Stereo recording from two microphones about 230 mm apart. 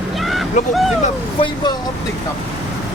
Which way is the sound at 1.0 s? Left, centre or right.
Left.